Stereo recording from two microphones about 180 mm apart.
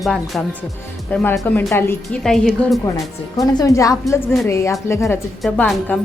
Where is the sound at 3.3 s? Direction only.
20° left (ahead or behind).